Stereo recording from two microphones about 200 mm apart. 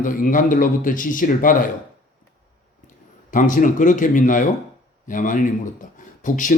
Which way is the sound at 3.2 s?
40° left (ahead or behind).